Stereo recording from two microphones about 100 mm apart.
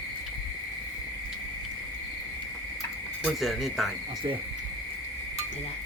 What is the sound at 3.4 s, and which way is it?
Cricket, centre (ahead or behind).